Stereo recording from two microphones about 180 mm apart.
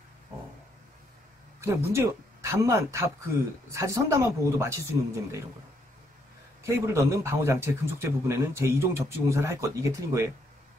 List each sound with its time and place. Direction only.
1.6 s a man's voice: 15° right (ahead or behind)
6.6 s a man's voice: 15° right (ahead or behind)